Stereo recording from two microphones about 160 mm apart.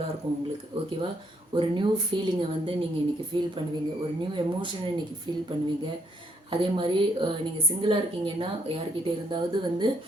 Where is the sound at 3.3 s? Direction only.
30° right (ahead or behind).